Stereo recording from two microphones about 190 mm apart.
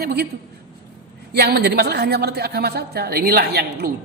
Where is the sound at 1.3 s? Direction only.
60° right (ahead or behind).